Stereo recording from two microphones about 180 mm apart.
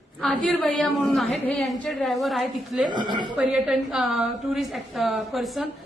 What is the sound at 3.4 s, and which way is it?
A woman's voice, 5° right (ahead or behind).